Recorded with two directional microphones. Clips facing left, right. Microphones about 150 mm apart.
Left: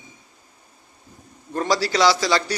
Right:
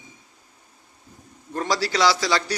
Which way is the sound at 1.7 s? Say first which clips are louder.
Left 2 dB; 5° right (ahead or behind).